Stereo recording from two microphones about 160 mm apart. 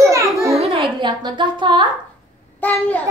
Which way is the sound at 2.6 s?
10° left (ahead or behind).